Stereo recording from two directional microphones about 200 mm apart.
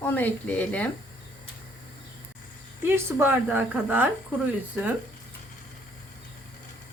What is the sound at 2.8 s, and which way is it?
A woman's voice, 10° right (ahead or behind).